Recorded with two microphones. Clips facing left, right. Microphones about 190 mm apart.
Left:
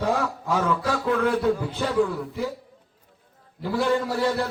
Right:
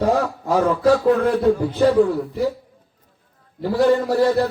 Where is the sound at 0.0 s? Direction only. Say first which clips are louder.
Right 6 dB; 40° right (ahead or behind).